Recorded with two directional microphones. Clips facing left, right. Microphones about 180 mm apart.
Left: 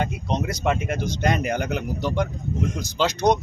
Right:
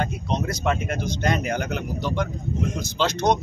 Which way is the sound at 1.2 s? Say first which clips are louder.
Left 1 dB; 5° left (ahead or behind).